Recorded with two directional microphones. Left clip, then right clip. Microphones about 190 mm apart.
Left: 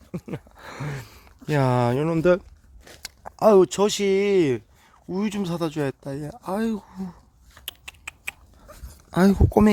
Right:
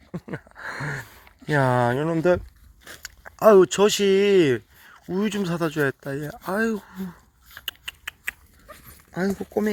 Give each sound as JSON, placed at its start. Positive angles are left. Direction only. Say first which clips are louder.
{"t": 0.1, "sound": "a sound", "louder": "even", "side_deg": 15}
{"t": 3.3, "sound": "speech", "louder": "right 2 dB", "side_deg": 0}
{"t": 7.6, "sound": "typing", "louder": "right 4 dB", "side_deg": 0}
{"t": 9.0, "sound": "speech", "louder": "left 6 dB", "side_deg": 40}